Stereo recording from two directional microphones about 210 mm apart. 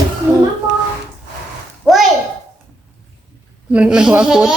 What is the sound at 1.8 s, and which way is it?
Speech, centre (ahead or behind).